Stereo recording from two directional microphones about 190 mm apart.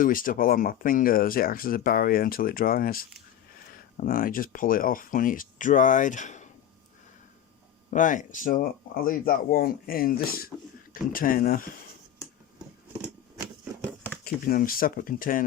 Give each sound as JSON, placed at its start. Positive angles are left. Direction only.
{"t": 0.0, "sound": "speech", "side_deg": 45}
{"t": 7.9, "sound": "speech", "side_deg": 40}
{"t": 14.3, "sound": "speech", "side_deg": 50}